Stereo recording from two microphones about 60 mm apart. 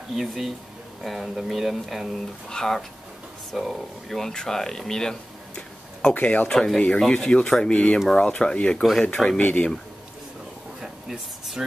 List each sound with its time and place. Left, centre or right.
0.1 s speech: centre
2.5 s speech: centre
3.5 s speech: centre
4.2 s speech: centre
6.1 s speech: left
6.5 s speech: centre
9.4 s speech: left
10.8 s air conditioning: centre